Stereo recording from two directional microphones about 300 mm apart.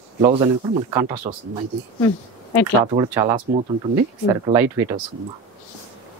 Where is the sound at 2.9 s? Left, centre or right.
Centre.